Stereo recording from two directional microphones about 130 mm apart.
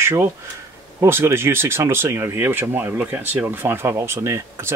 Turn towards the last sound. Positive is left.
turn(degrees=-20)  # may be behind; listen again after turning